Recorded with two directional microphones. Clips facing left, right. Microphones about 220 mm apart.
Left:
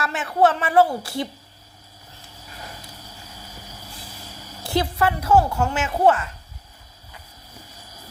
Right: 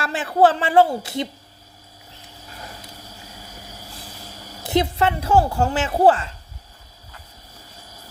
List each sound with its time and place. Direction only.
0.0 s speech: 30° right (ahead or behind)
4.6 s speech: 20° right (ahead or behind)